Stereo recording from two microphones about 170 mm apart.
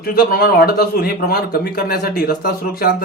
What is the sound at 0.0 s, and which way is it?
Speech, 60° left (ahead or behind).